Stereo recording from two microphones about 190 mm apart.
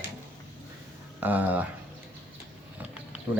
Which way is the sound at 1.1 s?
10° right (ahead or behind).